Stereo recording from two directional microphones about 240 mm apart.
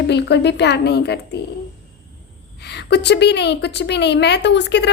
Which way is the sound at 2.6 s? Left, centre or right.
Left.